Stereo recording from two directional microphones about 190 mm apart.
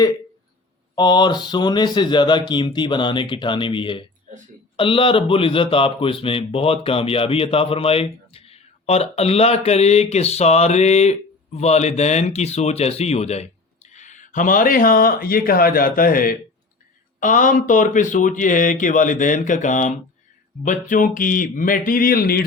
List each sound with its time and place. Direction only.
0.9 s speech: 25° left (ahead or behind); by 22.4 s 50° left (ahead or behind)